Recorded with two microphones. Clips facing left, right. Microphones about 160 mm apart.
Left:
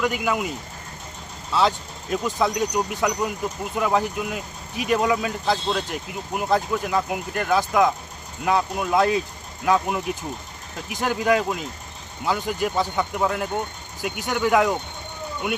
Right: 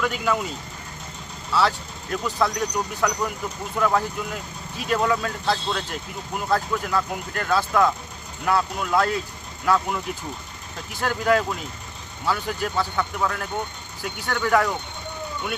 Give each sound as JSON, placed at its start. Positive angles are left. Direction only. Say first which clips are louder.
{"t": 0.0, "sound": "speech", "louder": "left 1 dB", "side_deg": 15}
{"t": 1.5, "sound": "speech", "louder": "left 1 dB", "side_deg": 20}